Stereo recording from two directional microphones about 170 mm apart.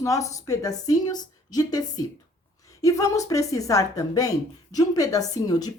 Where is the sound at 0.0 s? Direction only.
20° left (ahead or behind).